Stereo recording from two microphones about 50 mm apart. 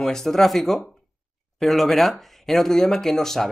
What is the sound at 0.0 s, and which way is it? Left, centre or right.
Speech, centre.